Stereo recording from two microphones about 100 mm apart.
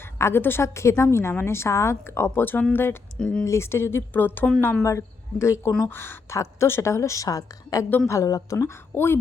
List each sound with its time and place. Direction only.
0.2 s speech: 25° left (ahead or behind)
4.8 s a woman's voice: 30° left (ahead or behind)